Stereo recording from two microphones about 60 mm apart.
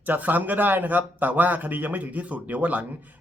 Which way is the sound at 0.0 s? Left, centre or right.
Right.